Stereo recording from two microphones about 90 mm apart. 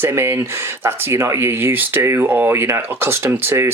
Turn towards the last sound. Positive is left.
turn(degrees=-25)  # may be behind; listen again after turning